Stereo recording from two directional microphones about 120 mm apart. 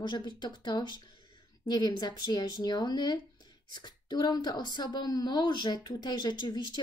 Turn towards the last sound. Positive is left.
turn(degrees=35)  # may be behind; listen again after turning